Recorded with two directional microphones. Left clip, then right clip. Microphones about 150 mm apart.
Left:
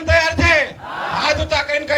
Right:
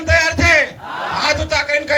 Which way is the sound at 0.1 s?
15° left (ahead or behind).